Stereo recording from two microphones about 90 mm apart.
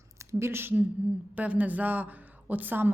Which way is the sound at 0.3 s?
30° right (ahead or behind).